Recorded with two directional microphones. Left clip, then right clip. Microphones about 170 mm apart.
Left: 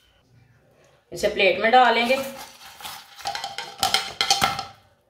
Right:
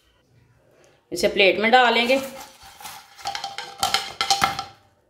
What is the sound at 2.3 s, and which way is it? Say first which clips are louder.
Stir: left 1 dB; 5° left (ahead or behind).